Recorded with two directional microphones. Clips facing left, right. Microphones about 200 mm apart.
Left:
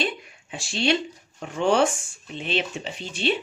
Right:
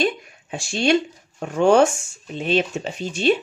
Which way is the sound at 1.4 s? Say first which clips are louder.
Right 6 dB; 45° right (ahead or behind).